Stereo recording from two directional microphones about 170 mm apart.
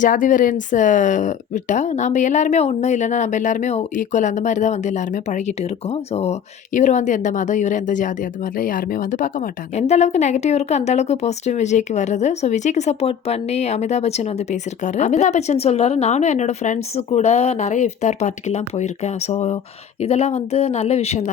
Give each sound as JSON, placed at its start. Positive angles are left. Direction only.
{"t": 0.0, "sound": "speech", "side_deg": 50}
{"t": 6.7, "sound": "speech", "side_deg": 45}
{"t": 9.7, "sound": "a woman's voice", "side_deg": 40}